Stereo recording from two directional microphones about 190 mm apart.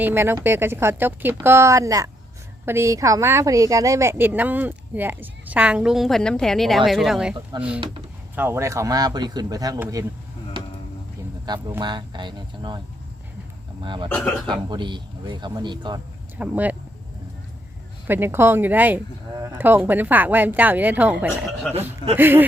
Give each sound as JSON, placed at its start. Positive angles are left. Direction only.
{"t": 0.0, "sound": "a woman's voice", "side_deg": -10}
{"t": 8.4, "sound": "a woman's voice", "side_deg": -15}
{"t": 11.4, "sound": "speech", "side_deg": -20}
{"t": 13.8, "sound": "speech", "side_deg": -25}
{"t": 14.1, "sound": "speech", "side_deg": 5}
{"t": 14.4, "sound": "speech", "side_deg": -25}
{"t": 16.4, "sound": "a woman's voice", "side_deg": -10}
{"t": 18.1, "sound": "a woman's voice", "side_deg": -10}